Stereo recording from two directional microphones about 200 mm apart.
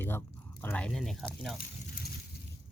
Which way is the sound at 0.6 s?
5° left (ahead or behind).